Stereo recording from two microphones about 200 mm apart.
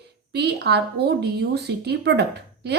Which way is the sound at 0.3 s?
55° right (ahead or behind).